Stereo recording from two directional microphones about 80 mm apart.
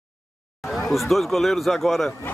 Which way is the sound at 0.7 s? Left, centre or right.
Centre.